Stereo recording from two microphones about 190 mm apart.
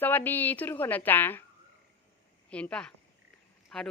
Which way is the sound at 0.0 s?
10° left (ahead or behind).